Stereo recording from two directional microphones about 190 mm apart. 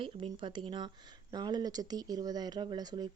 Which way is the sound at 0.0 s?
25° right (ahead or behind).